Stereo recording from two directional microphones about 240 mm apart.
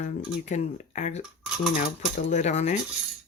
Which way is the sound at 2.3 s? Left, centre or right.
Left.